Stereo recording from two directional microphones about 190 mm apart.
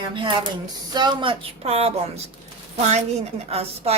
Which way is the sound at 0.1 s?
25° right (ahead or behind).